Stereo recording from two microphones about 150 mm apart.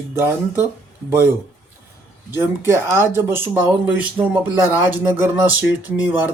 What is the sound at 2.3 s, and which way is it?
Speech, 15° right (ahead or behind).